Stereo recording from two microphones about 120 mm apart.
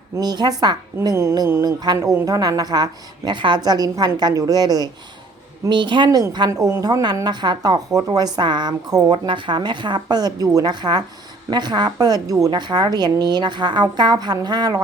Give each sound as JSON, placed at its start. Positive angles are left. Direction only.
{"t": 0.2, "sound": "a woman's voice", "side_deg": -35}
{"t": 1.1, "sound": "mantra", "side_deg": -25}
{"t": 1.8, "sound": "a woman's voice", "side_deg": -30}